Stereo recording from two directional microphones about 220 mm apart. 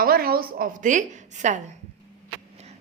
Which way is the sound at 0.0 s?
45° right (ahead or behind).